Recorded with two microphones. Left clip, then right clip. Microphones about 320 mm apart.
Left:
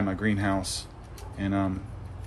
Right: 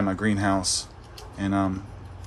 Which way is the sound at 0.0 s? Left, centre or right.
Centre.